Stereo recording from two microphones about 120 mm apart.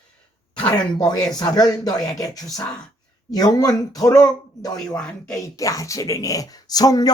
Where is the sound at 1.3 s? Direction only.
35° left (ahead or behind).